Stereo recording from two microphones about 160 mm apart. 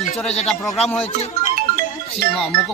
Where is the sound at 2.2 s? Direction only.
70° right (ahead or behind).